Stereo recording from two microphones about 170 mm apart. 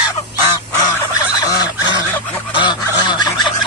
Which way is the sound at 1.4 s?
20° left (ahead or behind).